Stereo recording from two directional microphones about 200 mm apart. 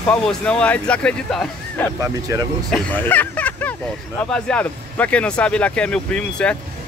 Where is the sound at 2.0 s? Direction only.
15° right (ahead or behind).